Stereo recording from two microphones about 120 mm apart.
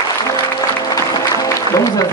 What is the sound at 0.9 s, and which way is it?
Music, 30° left (ahead or behind).